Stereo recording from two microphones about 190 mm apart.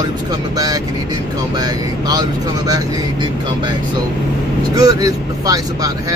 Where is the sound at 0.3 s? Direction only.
20° right (ahead or behind).